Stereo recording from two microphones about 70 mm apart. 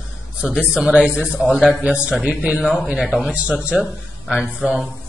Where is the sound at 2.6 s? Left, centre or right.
Centre.